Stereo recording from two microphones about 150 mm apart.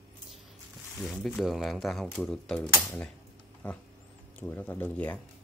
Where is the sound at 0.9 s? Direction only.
Centre (ahead or behind).